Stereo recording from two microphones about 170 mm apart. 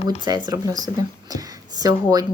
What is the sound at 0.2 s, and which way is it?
Speech, 25° right (ahead or behind).